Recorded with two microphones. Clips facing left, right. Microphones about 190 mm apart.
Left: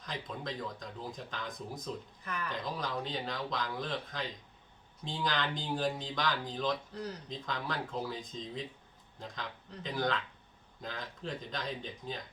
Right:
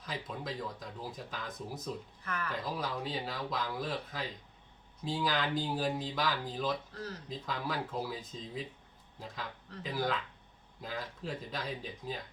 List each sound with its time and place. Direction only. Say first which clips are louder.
0.0 s speech: even; 5° right (ahead or behind)
2.2 s speech: right 1 dB; 15° left (ahead or behind)
2.5 s speech: even; 5° right (ahead or behind)
6.9 s speech: left 2 dB; 15° left (ahead or behind)
7.3 s speech: right 1 dB; 5° right (ahead or behind)